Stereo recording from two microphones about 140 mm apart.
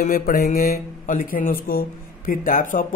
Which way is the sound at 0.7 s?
70° left (ahead or behind).